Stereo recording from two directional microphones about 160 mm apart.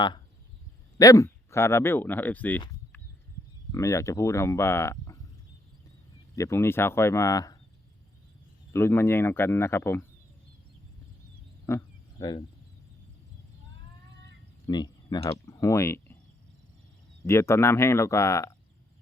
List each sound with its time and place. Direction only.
0.9 s speech: 20° left (ahead or behind)
6.3 s speech: 20° left (ahead or behind)
8.7 s speech: 15° left (ahead or behind)
11.7 s speech: 15° left (ahead or behind)
14.7 s speech: 25° left (ahead or behind)
17.2 s speech: 15° left (ahead or behind)